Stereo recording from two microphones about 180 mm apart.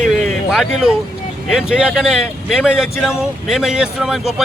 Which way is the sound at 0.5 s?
5° right (ahead or behind).